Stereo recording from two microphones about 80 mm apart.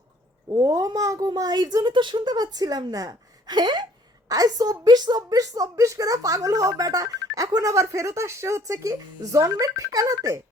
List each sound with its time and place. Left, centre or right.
0.4 s a woman's voice: right
4.3 s a woman's voice: right